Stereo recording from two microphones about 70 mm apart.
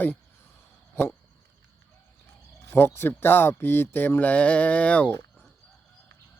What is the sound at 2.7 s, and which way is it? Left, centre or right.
Speech, left.